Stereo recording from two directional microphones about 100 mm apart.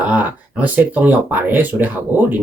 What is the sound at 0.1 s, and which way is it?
Speech, 15° right (ahead or behind).